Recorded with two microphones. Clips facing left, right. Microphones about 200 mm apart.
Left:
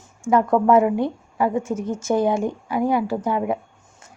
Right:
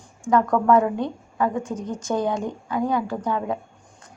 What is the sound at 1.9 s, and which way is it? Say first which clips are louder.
Speech: left 4 dB; 5° left (ahead or behind).